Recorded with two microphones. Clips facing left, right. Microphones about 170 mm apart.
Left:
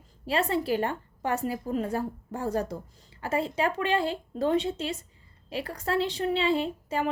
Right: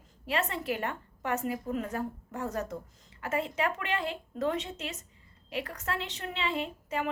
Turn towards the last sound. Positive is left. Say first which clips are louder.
# left 4 dB
turn(degrees=35)  # may be behind; listen again after turning